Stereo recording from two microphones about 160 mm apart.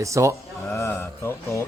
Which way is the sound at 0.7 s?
15° left (ahead or behind).